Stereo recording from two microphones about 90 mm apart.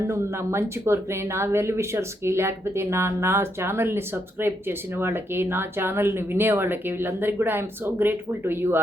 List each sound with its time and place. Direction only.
0.1 s speech: 30° right (ahead or behind)